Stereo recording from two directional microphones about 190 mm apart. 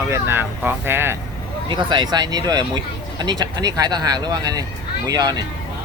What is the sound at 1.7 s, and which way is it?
Speech, 25° right (ahead or behind).